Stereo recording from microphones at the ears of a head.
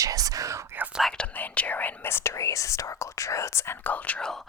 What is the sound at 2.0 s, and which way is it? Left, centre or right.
Whispering, left.